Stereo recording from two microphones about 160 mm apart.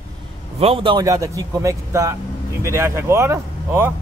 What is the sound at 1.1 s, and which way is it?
Speech, 20° right (ahead or behind).